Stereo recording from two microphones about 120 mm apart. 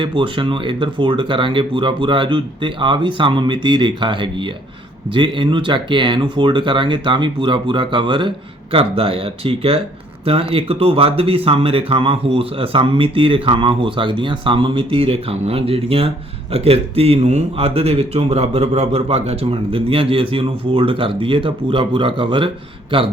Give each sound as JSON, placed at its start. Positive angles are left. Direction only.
{"t": 0.0, "sound": "speech", "side_deg": -45}